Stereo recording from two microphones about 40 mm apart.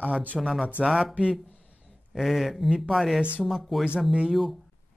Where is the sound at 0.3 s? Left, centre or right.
Centre.